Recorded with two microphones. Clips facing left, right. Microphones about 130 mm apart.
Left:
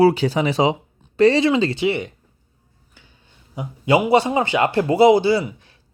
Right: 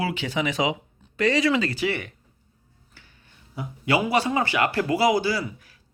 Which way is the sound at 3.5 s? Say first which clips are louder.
Left 6 dB; 20° left (ahead or behind).